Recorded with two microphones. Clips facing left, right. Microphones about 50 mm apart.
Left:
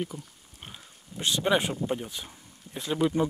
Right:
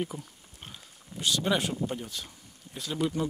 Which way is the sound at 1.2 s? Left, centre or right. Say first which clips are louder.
Left 2 dB; left.